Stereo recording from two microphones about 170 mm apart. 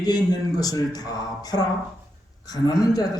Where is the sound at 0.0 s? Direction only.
25° left (ahead or behind).